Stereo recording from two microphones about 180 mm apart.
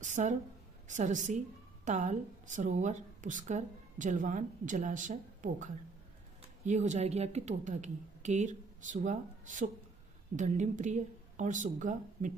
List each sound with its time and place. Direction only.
0.0 s a woman's voice: 45° right (ahead or behind)